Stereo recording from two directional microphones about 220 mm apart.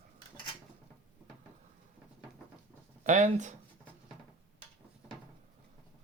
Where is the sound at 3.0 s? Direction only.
35° right (ahead or behind).